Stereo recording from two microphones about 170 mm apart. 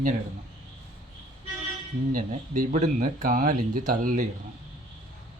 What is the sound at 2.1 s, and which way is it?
Speech, 50° right (ahead or behind).